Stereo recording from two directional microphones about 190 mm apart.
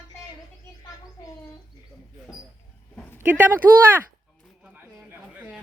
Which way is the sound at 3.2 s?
10° right (ahead or behind).